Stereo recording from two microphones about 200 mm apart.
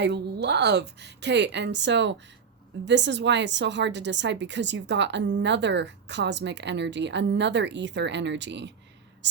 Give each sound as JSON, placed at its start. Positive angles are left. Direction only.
{"t": 0.0, "sound": "a woman's voice", "side_deg": -55}
{"t": 9.2, "sound": "whispering", "side_deg": -60}